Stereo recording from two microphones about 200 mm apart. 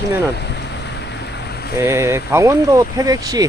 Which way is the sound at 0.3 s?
55° left (ahead or behind).